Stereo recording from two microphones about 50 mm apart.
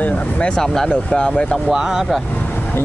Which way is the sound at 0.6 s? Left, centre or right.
Centre.